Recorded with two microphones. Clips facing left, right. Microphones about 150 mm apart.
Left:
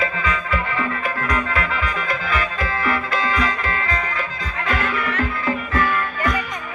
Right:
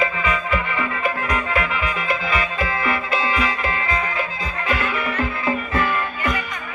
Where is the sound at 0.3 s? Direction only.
15° right (ahead or behind).